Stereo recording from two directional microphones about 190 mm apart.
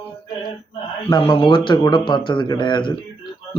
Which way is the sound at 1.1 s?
25° left (ahead or behind).